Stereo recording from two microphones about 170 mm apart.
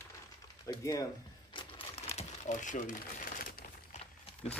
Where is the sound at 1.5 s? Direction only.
30° left (ahead or behind); by 4.0 s 55° left (ahead or behind).